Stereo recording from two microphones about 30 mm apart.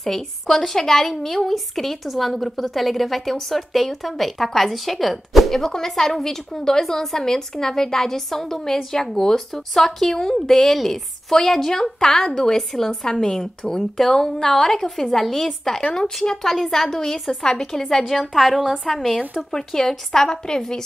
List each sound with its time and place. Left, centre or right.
0.0 s a woman's voice: centre
5.6 s a woman's voice: centre
18.2 s a woman's voice: centre
19.5 s a woman's voice: centre